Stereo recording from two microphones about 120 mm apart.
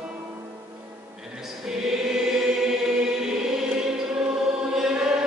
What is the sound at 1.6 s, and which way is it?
Choir, 5° right (ahead or behind).